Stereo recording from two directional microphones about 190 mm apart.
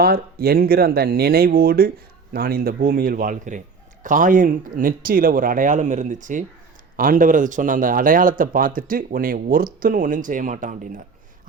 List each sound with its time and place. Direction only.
0.0 s a man's voice: 50° right (ahead or behind)